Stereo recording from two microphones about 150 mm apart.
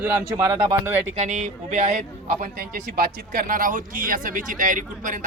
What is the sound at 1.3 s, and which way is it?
Speech, 55° right (ahead or behind).